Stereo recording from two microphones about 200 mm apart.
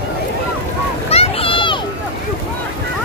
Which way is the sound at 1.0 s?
30° left (ahead or behind).